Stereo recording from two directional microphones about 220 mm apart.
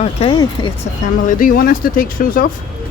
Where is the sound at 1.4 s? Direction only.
40° left (ahead or behind).